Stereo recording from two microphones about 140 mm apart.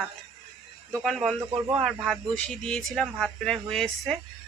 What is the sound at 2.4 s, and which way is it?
Speech, 5° left (ahead or behind).